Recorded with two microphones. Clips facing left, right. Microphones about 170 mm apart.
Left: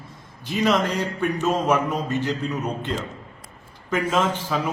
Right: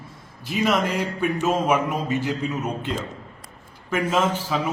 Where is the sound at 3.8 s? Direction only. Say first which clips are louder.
Even; 10° right (ahead or behind).